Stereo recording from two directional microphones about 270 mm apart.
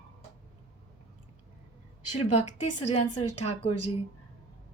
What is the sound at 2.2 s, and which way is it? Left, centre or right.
Speech, left.